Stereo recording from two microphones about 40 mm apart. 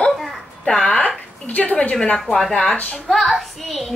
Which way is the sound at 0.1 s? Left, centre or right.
Centre.